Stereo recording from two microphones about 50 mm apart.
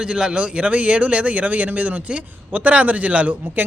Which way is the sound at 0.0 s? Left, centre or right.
Centre.